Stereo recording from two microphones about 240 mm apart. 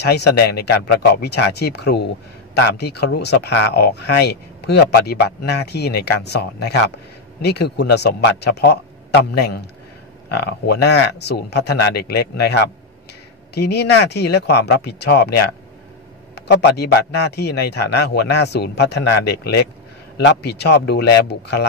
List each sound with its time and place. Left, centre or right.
0.0 s speech: left
16.3 s speech: left